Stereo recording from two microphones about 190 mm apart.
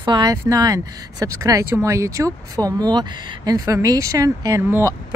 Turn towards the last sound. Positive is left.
turn(degrees=-15)  # may be behind; listen again after turning